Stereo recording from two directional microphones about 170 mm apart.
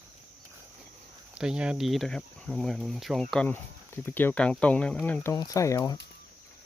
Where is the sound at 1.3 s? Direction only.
5° right (ahead or behind).